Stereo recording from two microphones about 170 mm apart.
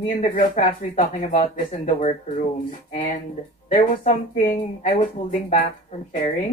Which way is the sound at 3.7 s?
40° left (ahead or behind).